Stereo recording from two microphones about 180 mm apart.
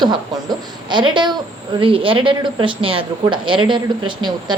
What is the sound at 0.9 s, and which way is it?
Speech, 25° right (ahead or behind).